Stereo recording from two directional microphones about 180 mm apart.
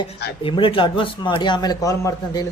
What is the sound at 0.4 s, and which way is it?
Speech, 30° left (ahead or behind).